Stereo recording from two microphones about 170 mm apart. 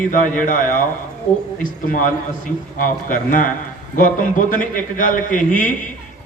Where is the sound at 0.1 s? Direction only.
50° left (ahead or behind).